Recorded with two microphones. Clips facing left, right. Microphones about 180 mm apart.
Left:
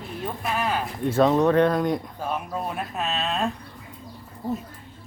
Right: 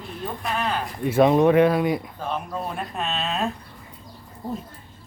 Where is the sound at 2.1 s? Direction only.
10° left (ahead or behind).